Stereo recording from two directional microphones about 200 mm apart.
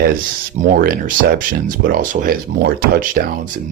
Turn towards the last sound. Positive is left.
turn(degrees=-45)  # may be behind; listen again after turning